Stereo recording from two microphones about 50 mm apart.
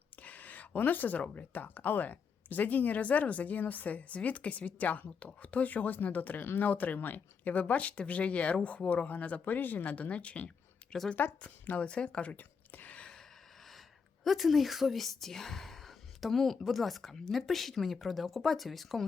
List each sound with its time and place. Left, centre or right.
0.2 s a sound: left
0.8 s a woman's voice: left
6.4 s speech: left
6.7 s speech: left
13.0 s gasp: centre
14.3 s speech: centre